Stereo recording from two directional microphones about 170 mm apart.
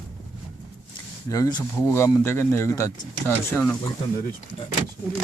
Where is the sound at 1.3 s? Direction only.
20° left (ahead or behind).